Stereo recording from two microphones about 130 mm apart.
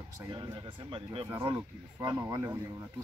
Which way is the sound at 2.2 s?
25° right (ahead or behind).